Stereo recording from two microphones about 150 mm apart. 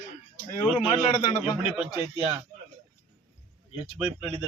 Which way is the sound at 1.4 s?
35° left (ahead or behind).